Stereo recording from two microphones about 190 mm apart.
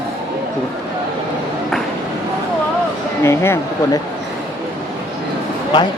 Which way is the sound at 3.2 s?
15° left (ahead or behind).